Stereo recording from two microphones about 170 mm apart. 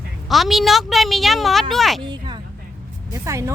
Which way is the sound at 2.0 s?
25° right (ahead or behind).